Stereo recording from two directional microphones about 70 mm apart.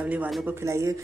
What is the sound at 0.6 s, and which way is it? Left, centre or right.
Speech, right.